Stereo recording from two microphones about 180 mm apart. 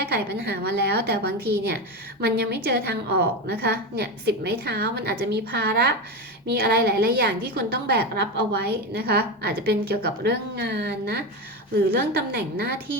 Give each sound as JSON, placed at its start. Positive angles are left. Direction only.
{"t": 0.1, "sound": "a woman's voice", "side_deg": -60}